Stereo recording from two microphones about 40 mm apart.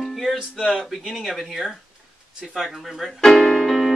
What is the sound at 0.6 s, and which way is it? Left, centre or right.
Speech, centre.